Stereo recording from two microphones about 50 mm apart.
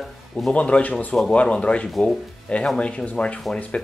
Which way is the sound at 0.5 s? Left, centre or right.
Left.